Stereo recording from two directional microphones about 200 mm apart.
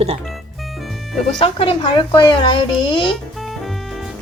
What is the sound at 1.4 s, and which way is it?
A child's voice, 25° left (ahead or behind).